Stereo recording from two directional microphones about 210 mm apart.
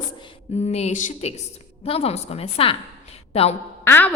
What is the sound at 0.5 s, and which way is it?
A woman's voice, 30° left (ahead or behind).